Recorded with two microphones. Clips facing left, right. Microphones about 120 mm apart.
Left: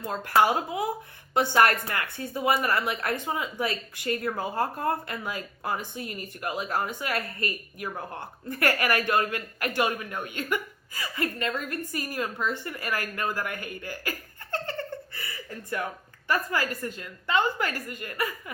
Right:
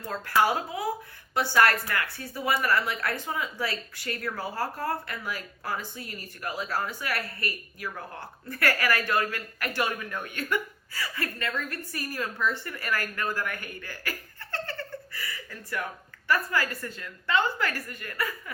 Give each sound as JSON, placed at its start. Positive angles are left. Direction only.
{"t": 0.0, "sound": "speech", "side_deg": 20}